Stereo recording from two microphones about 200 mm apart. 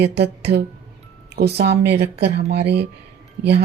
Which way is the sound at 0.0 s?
55° right (ahead or behind).